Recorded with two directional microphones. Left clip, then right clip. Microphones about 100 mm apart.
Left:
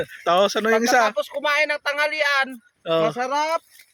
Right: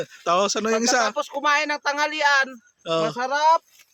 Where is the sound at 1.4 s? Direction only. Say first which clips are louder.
Even; 35° right (ahead or behind).